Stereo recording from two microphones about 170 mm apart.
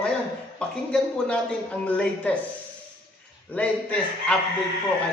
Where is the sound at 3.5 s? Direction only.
5° left (ahead or behind).